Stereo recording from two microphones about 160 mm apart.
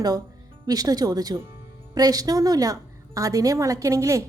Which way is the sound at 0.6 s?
25° right (ahead or behind).